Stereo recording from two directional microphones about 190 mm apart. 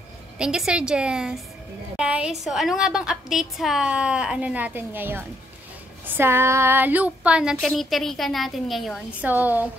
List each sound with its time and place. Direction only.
0.4 s a woman's voice: 5° right (ahead or behind)